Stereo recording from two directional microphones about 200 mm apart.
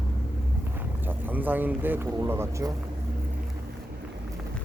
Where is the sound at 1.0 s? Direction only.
10° right (ahead or behind).